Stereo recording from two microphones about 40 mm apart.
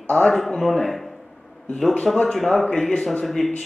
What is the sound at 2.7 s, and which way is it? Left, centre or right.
Speech, left.